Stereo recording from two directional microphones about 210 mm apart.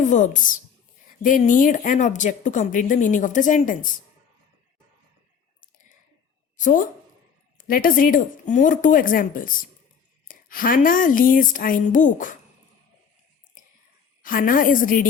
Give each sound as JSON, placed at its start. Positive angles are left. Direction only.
{"t": 0.0, "sound": "speech", "side_deg": 35}
{"t": 6.6, "sound": "speech", "side_deg": 40}
{"t": 13.6, "sound": "whispering", "side_deg": 40}
{"t": 14.2, "sound": "speech", "side_deg": 40}